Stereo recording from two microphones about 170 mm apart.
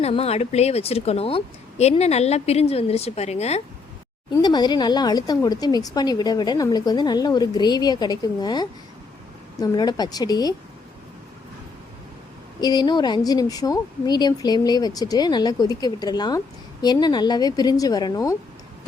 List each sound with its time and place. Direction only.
0.0 s a woman's voice: 35° left (ahead or behind)
4.4 s a woman's voice: 25° left (ahead or behind)
12.5 s a woman's voice: 25° left (ahead or behind)